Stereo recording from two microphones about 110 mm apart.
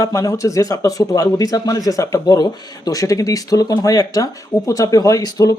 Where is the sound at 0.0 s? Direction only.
30° left (ahead or behind).